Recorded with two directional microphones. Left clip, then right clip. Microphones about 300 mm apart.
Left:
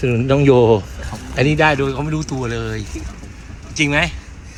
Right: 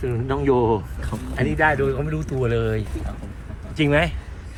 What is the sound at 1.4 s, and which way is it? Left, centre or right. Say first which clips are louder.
Speech: left 5 dB; centre.